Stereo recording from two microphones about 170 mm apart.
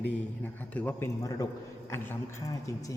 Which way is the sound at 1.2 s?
20° left (ahead or behind).